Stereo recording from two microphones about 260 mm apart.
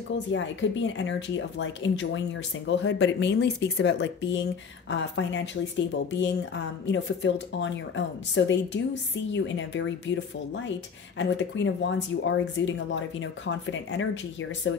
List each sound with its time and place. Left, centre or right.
0.3 s speech: left